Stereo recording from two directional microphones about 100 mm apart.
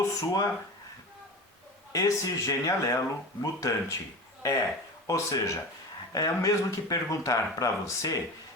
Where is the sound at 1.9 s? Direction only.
35° left (ahead or behind).